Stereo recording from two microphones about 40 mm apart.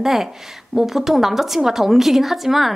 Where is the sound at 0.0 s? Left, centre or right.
Centre.